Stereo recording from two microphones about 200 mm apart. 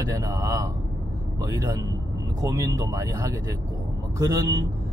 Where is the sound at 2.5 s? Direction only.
15° right (ahead or behind).